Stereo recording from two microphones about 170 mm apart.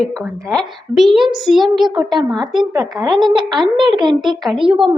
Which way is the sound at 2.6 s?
20° right (ahead or behind).